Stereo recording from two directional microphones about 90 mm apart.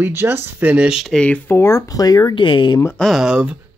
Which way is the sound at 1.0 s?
10° left (ahead or behind).